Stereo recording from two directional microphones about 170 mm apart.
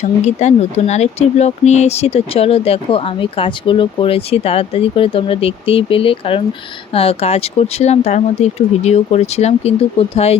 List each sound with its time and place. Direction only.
0.3 s speech: 40° left (ahead or behind)